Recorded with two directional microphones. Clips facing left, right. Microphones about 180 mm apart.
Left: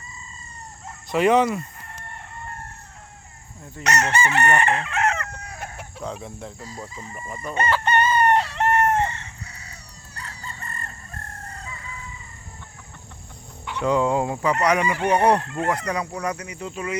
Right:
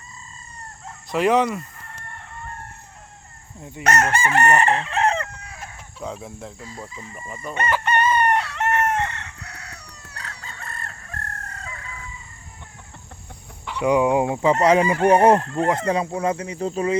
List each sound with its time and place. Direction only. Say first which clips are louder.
1.1 s crowing: left 1 dB; centre (ahead or behind)
3.8 s chicken: right 2 dB; 50° right (ahead or behind); by 5.3 s 30° right (ahead or behind)
5.3 s chicken: left 3 dB; 40° left (ahead or behind)
6.0 s speech: right 1 dB; 5° right (ahead or behind)
6.7 s crowing: left 1 dB; centre (ahead or behind)
7.9 s chicken: left 1 dB; 30° left (ahead or behind)
8.7 s chicken: left 2 dB; 70° right (ahead or behind)
13.7 s speech: right 3 dB; 15° right (ahead or behind)
15.4 s speech: right 4 dB; 40° right (ahead or behind)
15.6 s speech: right 4 dB; 25° right (ahead or behind)